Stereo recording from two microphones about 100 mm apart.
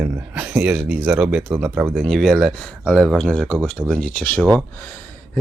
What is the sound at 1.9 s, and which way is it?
Speech, centre (ahead or behind).